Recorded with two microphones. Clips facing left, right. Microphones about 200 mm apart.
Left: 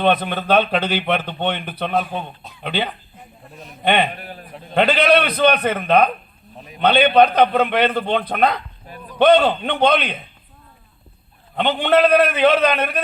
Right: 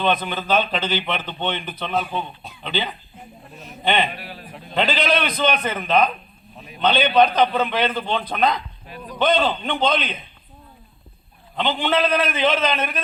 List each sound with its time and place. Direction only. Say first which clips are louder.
0.0 s a man's voice: left 4 dB; 60° left (ahead or behind)
11.5 s a man's voice: left 5 dB; 60° left (ahead or behind)